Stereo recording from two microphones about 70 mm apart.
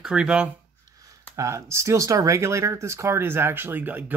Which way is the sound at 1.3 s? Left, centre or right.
Right.